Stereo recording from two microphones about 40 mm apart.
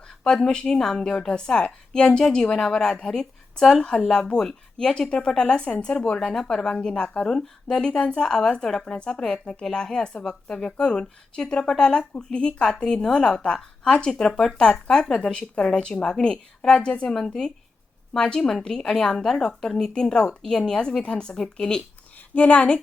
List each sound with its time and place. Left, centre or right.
0.7 s a woman's voice: centre
5.8 s speech: left
6.1 s a woman's voice: centre
22.4 s a woman's voice: left